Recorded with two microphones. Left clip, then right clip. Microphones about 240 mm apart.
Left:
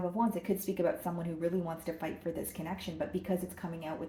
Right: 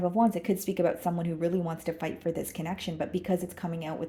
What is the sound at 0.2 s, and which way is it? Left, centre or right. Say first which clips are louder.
Speech: right 6 dB; right.